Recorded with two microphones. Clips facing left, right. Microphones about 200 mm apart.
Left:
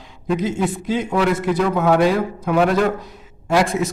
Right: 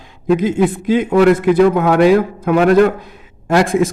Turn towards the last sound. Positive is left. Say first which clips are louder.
# right 5 dB
turn(degrees=-50)  # may be behind; listen again after turning